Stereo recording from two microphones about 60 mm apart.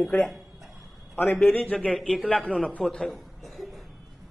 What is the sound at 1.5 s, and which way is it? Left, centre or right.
Speech, left.